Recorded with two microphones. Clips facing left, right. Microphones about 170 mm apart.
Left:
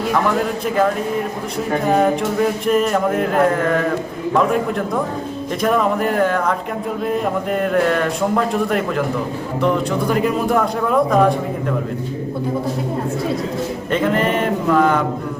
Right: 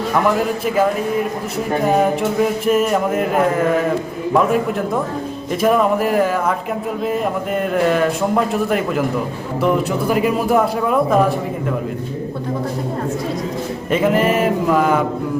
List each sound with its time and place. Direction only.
1.9 s a man's voice: 5° right (ahead or behind)
5.6 s a man's voice: 5° right (ahead or behind)
13.9 s a sound: 5° right (ahead or behind)